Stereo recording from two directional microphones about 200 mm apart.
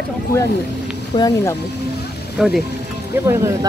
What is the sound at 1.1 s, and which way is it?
Speech, 20° left (ahead or behind).